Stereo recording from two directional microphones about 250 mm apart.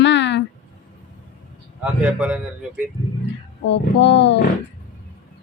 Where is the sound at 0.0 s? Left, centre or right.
Left.